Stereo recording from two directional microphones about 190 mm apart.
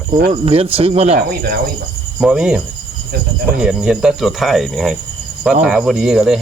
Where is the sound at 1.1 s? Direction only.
50° right (ahead or behind).